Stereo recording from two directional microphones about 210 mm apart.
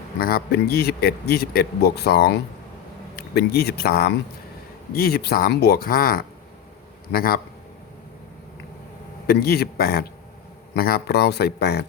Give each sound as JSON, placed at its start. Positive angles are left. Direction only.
{"t": 0.2, "sound": "speech", "side_deg": 45}
{"t": 9.2, "sound": "speech", "side_deg": 50}